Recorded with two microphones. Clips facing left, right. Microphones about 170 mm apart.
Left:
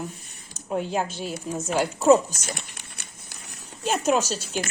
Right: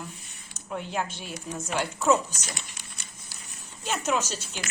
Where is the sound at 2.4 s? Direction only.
55° left (ahead or behind); by 3.9 s 75° left (ahead or behind).